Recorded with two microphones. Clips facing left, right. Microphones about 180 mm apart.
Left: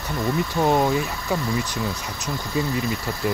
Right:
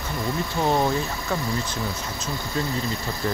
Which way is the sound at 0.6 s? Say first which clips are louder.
Left 2 dB; 15° left (ahead or behind).